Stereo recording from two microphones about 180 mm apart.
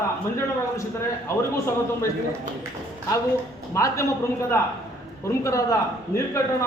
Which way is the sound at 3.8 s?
20° left (ahead or behind).